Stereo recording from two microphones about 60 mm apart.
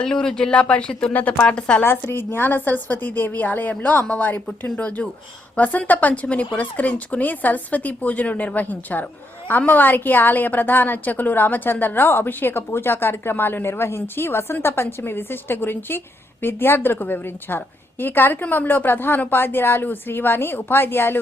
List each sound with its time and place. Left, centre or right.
0.0 s a woman's voice: centre
1.8 s a woman's voice: left